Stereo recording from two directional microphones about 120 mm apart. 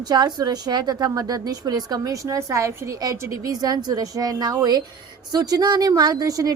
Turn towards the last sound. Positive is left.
turn(degrees=-30)  # may be behind; listen again after turning